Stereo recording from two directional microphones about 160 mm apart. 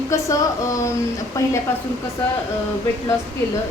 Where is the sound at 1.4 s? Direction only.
20° left (ahead or behind).